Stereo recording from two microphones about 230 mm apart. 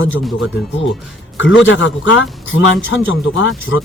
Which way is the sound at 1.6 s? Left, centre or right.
Left.